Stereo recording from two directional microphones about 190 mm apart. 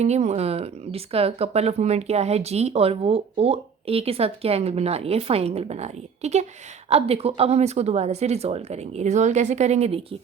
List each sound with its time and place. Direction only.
0.0 s speech: 35° right (ahead or behind)